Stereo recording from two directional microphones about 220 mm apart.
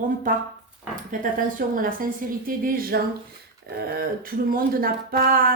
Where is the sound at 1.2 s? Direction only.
40° right (ahead or behind).